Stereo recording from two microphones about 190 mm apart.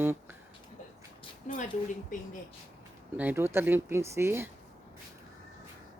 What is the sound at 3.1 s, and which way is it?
Speech, 10° right (ahead or behind).